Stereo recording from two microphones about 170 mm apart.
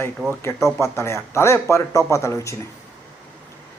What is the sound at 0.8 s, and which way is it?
Speech, 15° left (ahead or behind).